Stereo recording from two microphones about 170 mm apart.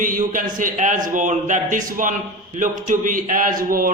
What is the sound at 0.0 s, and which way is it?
A man's voice, 50° right (ahead or behind).